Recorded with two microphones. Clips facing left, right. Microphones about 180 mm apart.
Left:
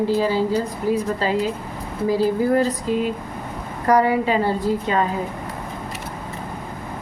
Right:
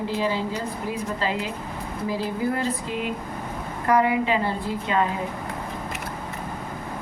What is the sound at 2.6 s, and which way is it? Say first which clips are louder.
Speech: left 7 dB; 40° left (ahead or behind).